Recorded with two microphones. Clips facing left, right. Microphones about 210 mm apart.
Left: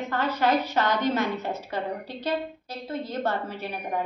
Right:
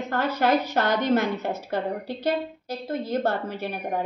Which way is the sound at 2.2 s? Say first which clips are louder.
Right 2 dB; 45° right (ahead or behind).